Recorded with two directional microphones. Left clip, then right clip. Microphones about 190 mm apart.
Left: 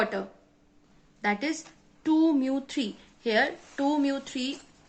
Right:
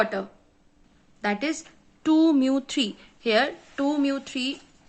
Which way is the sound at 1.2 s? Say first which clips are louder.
Right 2 dB; 30° right (ahead or behind).